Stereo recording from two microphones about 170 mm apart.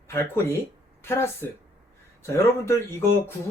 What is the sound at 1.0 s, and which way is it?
Speech, 15° left (ahead or behind).